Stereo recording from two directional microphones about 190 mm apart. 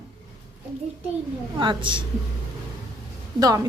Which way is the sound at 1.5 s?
25° right (ahead or behind).